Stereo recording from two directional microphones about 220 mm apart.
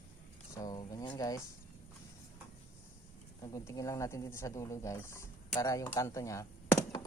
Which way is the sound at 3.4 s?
15° left (ahead or behind).